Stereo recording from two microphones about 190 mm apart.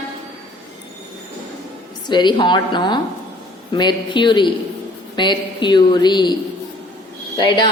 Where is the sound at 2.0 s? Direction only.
25° left (ahead or behind).